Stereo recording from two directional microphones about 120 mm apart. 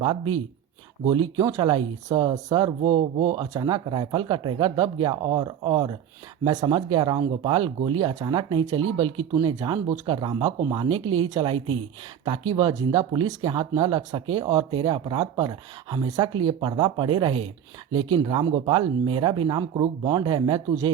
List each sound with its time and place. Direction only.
1.0 s speech: 40° right (ahead or behind)
2.8 s speech: 60° right (ahead or behind)
3.5 s speech: 35° right (ahead or behind)
12.6 s speech: 30° right (ahead or behind)